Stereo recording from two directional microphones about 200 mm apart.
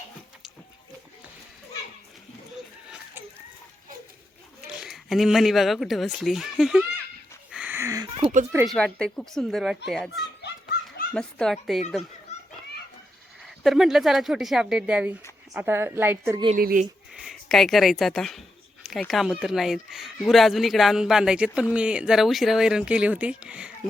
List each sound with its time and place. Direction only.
4.8 s speech: centre (ahead or behind)
7.5 s a sound: 10° right (ahead or behind)
8.2 s speech: 40° right (ahead or behind)
8.6 s speech: 5° left (ahead or behind)
12.3 s children playing: 35° left (ahead or behind)
13.4 s a woman's voice: centre (ahead or behind)
16.6 s speech: 45° right (ahead or behind)
17.2 s speech: centre (ahead or behind)